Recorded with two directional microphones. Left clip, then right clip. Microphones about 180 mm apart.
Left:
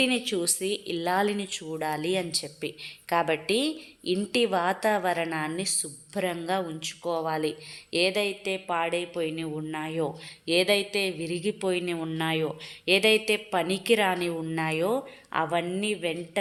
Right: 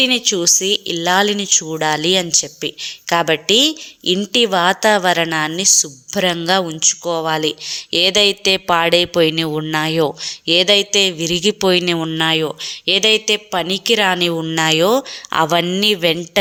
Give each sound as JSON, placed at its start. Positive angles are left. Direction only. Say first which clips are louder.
{"t": 0.0, "sound": "speech", "louder": "right 11 dB", "side_deg": -20}